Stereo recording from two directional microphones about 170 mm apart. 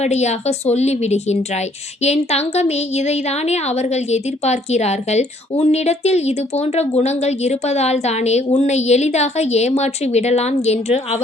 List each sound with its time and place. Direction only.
0.0 s a woman's voice: 40° left (ahead or behind)